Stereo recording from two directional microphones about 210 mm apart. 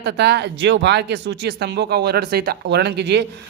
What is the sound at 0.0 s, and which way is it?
Speech, 50° right (ahead or behind).